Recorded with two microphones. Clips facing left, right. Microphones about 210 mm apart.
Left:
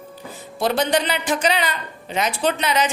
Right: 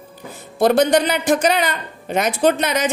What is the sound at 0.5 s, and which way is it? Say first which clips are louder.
Speech: right 6 dB; 50° right (ahead or behind).